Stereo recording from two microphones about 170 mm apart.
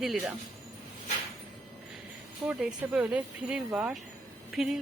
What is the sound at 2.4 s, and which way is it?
Speech, 5° right (ahead or behind).